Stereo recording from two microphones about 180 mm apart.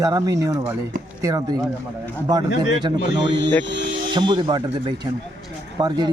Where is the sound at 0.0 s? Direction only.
20° right (ahead or behind).